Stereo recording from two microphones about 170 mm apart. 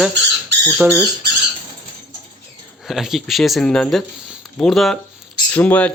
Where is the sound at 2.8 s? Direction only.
Centre (ahead or behind).